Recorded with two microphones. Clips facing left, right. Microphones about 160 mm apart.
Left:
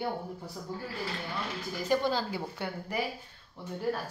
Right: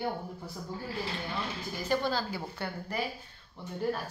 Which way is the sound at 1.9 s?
20° left (ahead or behind).